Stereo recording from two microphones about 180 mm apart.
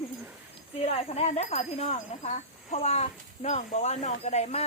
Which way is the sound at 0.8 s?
35° left (ahead or behind).